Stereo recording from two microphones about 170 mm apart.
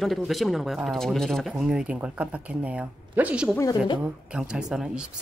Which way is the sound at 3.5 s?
25° left (ahead or behind).